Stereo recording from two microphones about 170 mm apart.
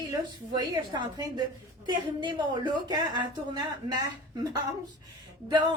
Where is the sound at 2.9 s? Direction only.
25° right (ahead or behind).